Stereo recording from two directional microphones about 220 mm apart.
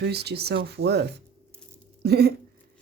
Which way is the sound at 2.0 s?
45° right (ahead or behind).